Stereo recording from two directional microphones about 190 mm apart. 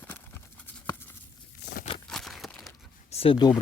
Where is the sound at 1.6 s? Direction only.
60° left (ahead or behind).